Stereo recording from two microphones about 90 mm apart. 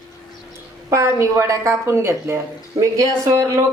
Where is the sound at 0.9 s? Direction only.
30° right (ahead or behind).